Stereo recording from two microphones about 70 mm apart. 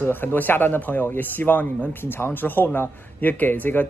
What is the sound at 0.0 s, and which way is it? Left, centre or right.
Speech, left.